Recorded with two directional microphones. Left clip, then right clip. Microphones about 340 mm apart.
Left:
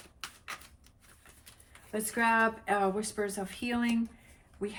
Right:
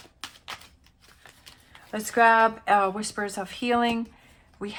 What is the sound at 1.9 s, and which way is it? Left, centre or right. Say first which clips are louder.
Speech: right 9 dB; centre.